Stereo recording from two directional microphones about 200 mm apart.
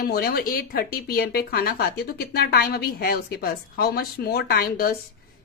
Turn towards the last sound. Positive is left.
turn(degrees=50)  # may be behind; listen again after turning